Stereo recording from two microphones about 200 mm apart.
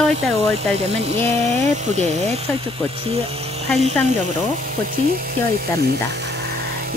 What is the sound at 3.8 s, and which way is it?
Speech, 35° right (ahead or behind).